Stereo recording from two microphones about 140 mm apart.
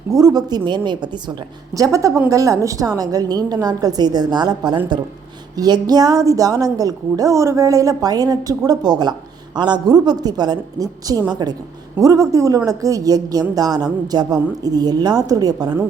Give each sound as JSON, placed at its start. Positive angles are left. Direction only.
{"t": 0.1, "sound": "a woman's voice", "side_deg": -25}